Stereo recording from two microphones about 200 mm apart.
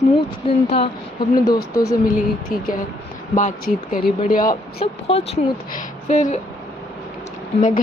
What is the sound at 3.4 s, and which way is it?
Speech, 40° left (ahead or behind).